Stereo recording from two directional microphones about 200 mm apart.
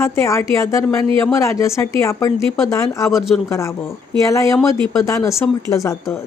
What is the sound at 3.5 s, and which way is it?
Speech, 15° left (ahead or behind).